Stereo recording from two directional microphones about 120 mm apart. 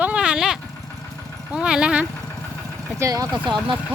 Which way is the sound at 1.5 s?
5° right (ahead or behind).